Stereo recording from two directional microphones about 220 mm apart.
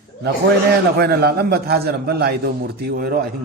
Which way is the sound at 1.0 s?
45° right (ahead or behind).